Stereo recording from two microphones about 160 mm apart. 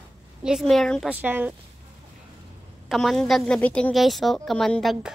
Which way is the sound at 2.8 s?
Centre (ahead or behind).